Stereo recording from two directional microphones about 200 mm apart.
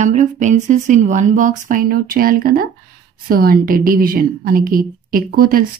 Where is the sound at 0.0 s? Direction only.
40° right (ahead or behind).